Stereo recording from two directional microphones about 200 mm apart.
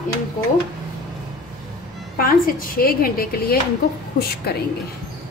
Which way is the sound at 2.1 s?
45° left (ahead or behind).